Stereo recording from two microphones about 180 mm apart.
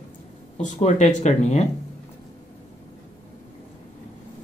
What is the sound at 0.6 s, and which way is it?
Speech, 40° left (ahead or behind).